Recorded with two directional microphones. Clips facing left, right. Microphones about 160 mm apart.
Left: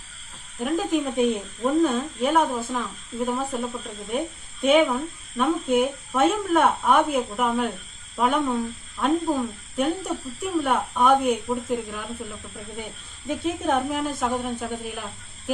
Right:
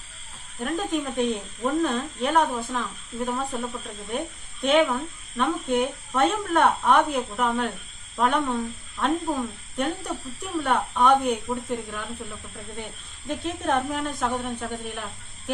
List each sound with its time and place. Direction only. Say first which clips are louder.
0.6 s speech: left 3 dB; 5° left (ahead or behind)